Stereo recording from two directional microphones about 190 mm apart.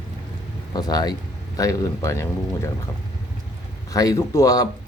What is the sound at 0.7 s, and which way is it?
Speech, 20° left (ahead or behind).